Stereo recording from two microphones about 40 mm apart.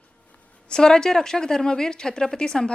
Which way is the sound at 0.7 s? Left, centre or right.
Centre.